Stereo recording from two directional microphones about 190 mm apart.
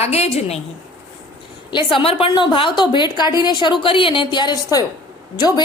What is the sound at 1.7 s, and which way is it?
Speech, 25° left (ahead or behind).